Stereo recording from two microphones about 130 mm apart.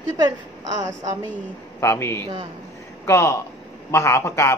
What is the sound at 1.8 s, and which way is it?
A man's voice, 20° left (ahead or behind).